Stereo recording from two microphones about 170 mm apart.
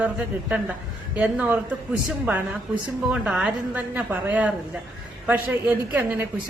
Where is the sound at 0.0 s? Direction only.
5° right (ahead or behind).